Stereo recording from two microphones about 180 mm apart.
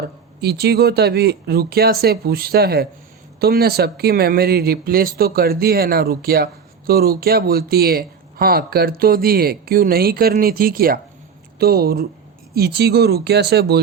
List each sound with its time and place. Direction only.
0.4 s speech: 60° right (ahead or behind)